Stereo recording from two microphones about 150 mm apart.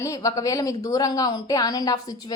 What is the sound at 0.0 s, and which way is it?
Speech, 25° left (ahead or behind).